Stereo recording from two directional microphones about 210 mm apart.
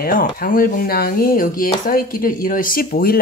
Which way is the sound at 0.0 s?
45° left (ahead or behind).